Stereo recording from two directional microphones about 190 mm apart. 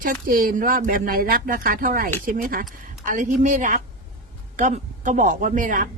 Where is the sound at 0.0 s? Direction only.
45° right (ahead or behind).